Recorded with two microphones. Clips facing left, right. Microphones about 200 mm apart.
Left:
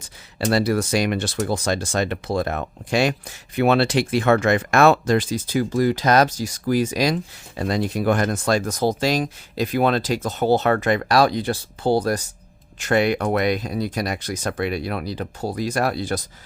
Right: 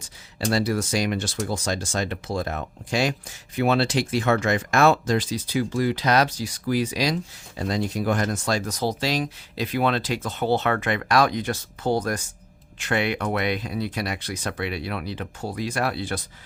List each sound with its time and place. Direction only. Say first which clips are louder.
0.0 s speech: left 3 dB; 60° left (ahead or behind); by 16.2 s 40° left (ahead or behind)